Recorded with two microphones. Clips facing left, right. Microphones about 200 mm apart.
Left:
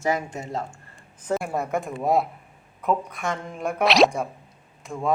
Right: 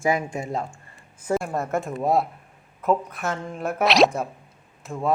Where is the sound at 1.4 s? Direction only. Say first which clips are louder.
Right 1 dB; centre (ahead or behind).